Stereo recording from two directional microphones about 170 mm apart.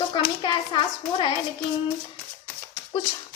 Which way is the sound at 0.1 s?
30° left (ahead or behind).